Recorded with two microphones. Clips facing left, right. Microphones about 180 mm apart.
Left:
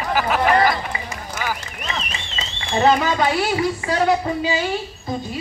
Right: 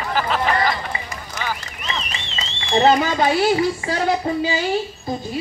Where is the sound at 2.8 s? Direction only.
30° right (ahead or behind).